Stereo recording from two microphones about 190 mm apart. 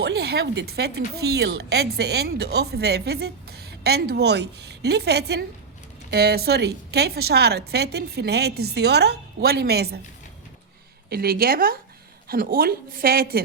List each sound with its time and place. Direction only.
0.0 s speech: 60° right (ahead or behind)
11.1 s a woman's voice: 55° right (ahead or behind)